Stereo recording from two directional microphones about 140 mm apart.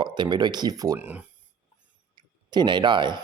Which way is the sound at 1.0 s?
10° right (ahead or behind).